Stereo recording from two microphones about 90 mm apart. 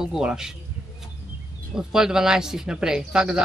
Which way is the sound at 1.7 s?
5° right (ahead or behind).